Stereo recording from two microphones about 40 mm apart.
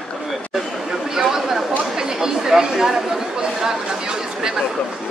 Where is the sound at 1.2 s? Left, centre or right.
Centre.